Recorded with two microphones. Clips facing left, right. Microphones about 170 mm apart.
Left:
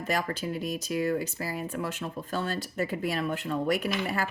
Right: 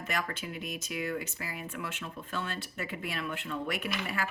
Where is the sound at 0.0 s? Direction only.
35° left (ahead or behind).